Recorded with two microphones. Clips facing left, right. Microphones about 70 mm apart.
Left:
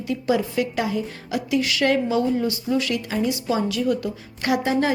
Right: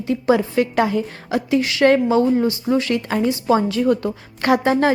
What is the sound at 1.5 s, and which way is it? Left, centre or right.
A woman's voice, right.